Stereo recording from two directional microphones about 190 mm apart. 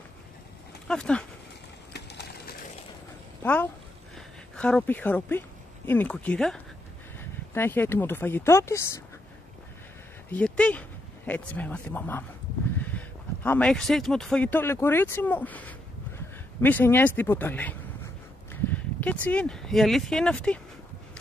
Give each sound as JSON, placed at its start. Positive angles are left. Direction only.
{"t": 0.8, "sound": "speech", "side_deg": 5}
{"t": 2.0, "sound": "a sound", "side_deg": 60}
{"t": 4.6, "sound": "speech", "side_deg": 5}
{"t": 10.3, "sound": "speech", "side_deg": 5}